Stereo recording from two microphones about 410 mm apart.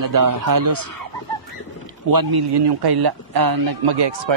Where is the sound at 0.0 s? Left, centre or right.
Right.